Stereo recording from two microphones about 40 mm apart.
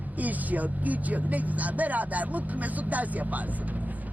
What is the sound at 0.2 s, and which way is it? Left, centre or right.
Speech, right.